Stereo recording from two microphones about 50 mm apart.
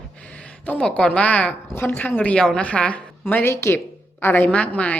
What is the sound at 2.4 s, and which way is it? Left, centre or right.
Speech, centre.